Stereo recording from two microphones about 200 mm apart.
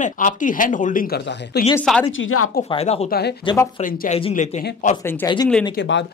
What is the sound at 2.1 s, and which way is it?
Speech, 90° left.